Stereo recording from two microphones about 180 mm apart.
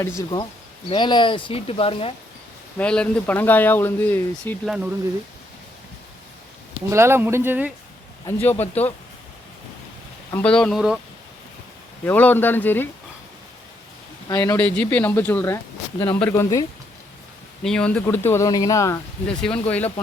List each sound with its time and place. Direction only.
0.2 s speech: 25° left (ahead or behind)
2.7 s speech: 5° left (ahead or behind)
4.6 s speech: 5° right (ahead or behind)
6.9 s speech: 15° right (ahead or behind)
8.3 s speech: 10° left (ahead or behind)
10.3 s speech: 5° left (ahead or behind)
12.0 s speech: 10° left (ahead or behind)
14.3 s speech: 20° left (ahead or behind)
17.6 s speech: 5° left (ahead or behind)